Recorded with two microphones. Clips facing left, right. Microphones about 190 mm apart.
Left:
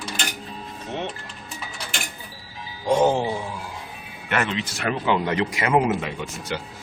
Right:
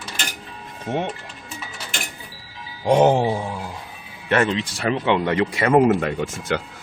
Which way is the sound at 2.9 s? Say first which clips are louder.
Right 4 dB; 60° right (ahead or behind).